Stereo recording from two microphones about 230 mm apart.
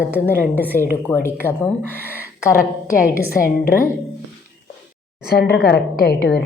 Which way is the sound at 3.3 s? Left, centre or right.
Left.